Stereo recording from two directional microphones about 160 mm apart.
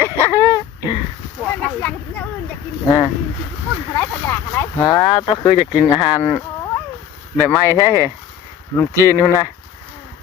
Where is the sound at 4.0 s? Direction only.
15° left (ahead or behind).